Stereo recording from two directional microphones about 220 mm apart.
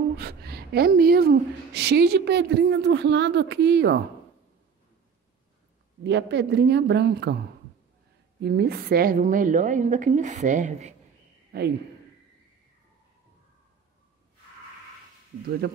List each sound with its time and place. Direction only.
0.2 s a woman's voice: 45° right (ahead or behind)
6.0 s a woman's voice: 50° right (ahead or behind)
8.4 s a woman's voice: 45° right (ahead or behind); by 11.0 s 30° right (ahead or behind)
11.5 s a man's voice: 45° right (ahead or behind)